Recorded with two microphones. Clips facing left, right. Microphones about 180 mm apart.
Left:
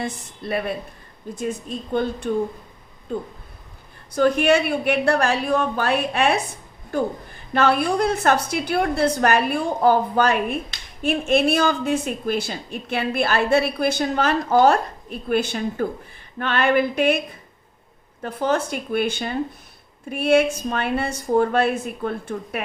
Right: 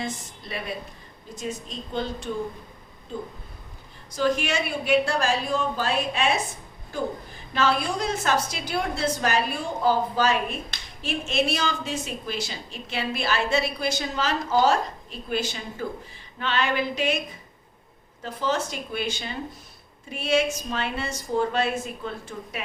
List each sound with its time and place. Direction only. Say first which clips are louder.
0.0 s speech: left 4 dB; 55° left (ahead or behind)
4.1 s speech: left 7 dB; 60° left (ahead or behind)
18.2 s speech: left 5 dB; 55° left (ahead or behind)